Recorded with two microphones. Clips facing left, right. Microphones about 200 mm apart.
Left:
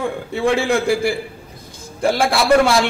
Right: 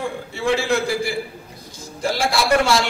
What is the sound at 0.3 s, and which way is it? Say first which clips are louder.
A man's voice: left 3 dB; 55° left (ahead or behind).